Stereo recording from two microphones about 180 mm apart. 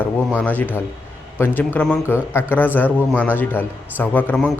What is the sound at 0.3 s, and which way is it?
Speech, 10° left (ahead or behind).